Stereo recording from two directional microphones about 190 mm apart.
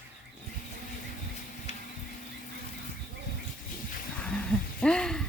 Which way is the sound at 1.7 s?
35° left (ahead or behind).